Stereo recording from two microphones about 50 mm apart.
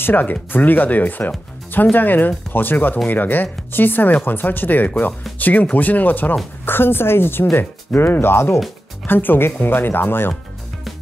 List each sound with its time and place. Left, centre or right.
0.0 s speech: left
6.6 s speech: left